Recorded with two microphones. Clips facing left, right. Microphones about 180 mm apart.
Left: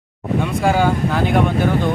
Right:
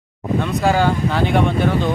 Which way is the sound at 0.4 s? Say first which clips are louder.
Even; 5° left (ahead or behind).